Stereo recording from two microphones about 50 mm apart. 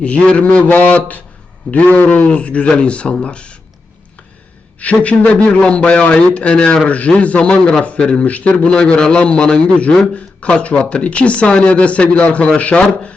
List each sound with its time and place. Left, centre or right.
0.0 s speech: left
4.8 s speech: left
8.5 s speech: centre